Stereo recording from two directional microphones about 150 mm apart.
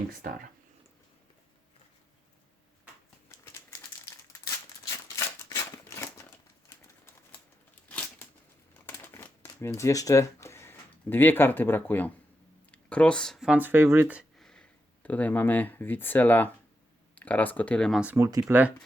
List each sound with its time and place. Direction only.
0.2 s speech: 80° right
3.5 s crumpling: 20° left (ahead or behind)
4.9 s a sound: 20° left (ahead or behind)
7.9 s a sound: 10° left (ahead or behind)
8.9 s shuffling cards: 15° left (ahead or behind)
12.7 s speech: 10° left (ahead or behind); by 14.3 s 10° right (ahead or behind)
14.3 s speech: 5° left (ahead or behind)
18.0 s speech: 10° right (ahead or behind)
18.3 s speech: 25° right (ahead or behind)